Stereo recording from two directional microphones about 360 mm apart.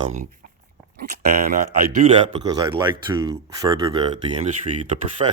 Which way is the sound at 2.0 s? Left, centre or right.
Right.